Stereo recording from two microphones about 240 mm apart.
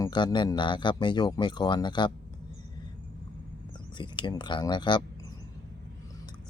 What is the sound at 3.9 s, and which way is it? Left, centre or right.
Speech, centre.